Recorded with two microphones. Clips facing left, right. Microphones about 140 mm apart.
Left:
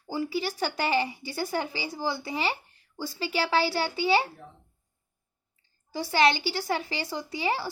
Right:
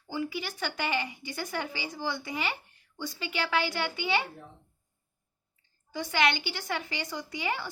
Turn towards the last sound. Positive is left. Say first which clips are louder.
# left 4 dB
turn(degrees=30)  # may be behind; listen again after turning